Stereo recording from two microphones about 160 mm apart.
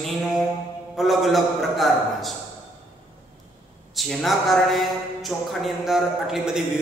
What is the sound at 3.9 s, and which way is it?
A man's voice, centre (ahead or behind).